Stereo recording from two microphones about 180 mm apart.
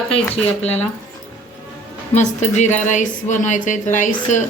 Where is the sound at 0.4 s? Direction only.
35° left (ahead or behind).